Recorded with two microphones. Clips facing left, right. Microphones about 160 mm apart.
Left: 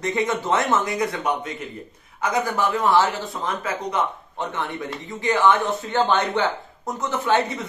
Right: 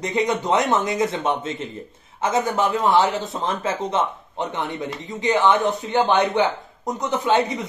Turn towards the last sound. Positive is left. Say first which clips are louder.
# right 1 dB
turn(degrees=-20)  # may be behind; listen again after turning